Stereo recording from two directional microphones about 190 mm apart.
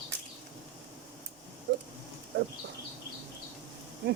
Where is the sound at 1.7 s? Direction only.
70° right (ahead or behind).